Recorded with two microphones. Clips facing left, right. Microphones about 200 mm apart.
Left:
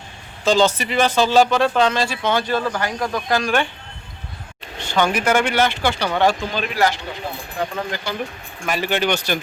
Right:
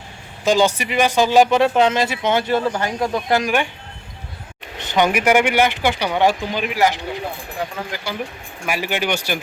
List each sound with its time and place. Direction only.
0.4 s speech: 15° right (ahead or behind)
4.8 s speech: 20° right (ahead or behind)